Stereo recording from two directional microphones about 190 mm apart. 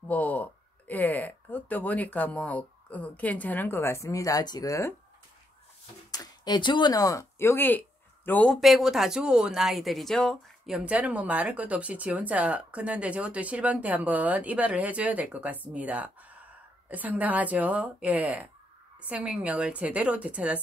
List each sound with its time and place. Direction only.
0.1 s speech: 10° left (ahead or behind)
6.1 s speech: 20° left (ahead or behind); by 20.6 s 5° right (ahead or behind)